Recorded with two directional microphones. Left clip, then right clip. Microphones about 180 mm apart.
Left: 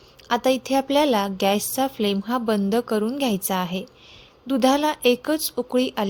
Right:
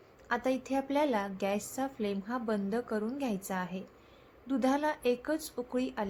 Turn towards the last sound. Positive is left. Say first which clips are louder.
# left 12 dB
turn(degrees=45)  # may be behind; listen again after turning